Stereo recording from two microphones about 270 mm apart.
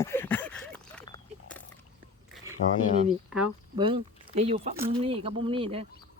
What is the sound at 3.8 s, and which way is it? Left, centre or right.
Speech, centre.